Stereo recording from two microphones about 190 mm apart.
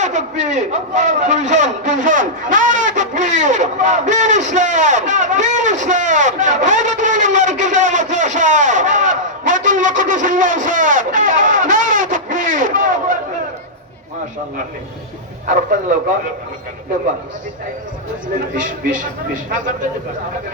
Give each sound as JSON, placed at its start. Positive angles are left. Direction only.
{"t": 0.0, "sound": "a man's voice", "side_deg": -40}
{"t": 18.6, "sound": "speech", "side_deg": -45}